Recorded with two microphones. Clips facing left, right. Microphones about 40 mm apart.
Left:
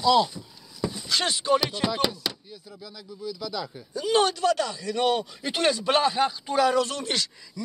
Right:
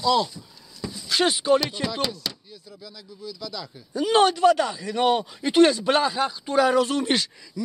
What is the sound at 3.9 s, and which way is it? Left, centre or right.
Speech, right.